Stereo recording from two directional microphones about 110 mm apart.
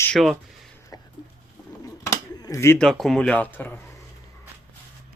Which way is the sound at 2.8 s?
5° left (ahead or behind).